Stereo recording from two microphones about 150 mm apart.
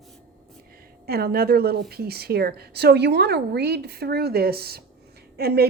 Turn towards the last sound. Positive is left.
turn(degrees=-90)